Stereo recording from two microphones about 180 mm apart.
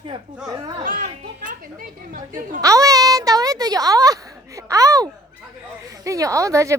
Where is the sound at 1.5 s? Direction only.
50° right (ahead or behind).